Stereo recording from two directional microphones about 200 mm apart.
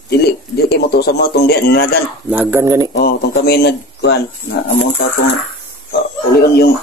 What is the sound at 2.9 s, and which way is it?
A man's voice, 55° left (ahead or behind).